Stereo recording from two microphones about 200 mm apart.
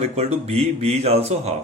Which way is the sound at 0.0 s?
30° right (ahead or behind).